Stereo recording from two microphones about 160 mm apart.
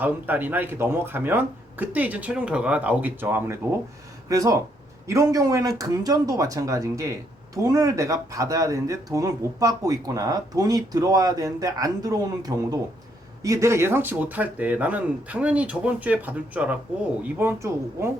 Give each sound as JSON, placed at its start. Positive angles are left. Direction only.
{"t": 0.0, "sound": "speech", "side_deg": -10}